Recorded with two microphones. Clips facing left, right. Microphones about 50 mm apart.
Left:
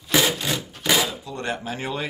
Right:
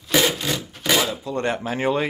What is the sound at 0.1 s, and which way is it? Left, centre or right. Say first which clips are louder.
Wood: right 1 dB; centre.